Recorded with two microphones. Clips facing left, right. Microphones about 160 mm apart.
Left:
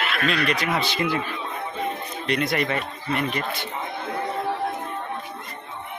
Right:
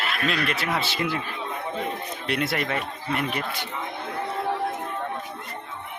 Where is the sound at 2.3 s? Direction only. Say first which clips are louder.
Left 3 dB; 5° right (ahead or behind).